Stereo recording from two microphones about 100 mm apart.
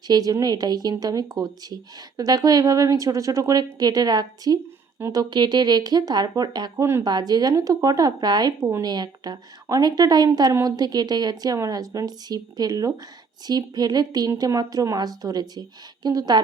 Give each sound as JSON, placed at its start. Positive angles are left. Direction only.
{"t": 0.1, "sound": "a woman's voice", "side_deg": -40}